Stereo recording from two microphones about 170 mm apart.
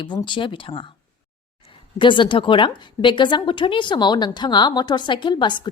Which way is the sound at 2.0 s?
30° left (ahead or behind).